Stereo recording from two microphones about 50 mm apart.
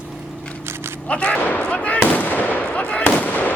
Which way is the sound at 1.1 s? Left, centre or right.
Left.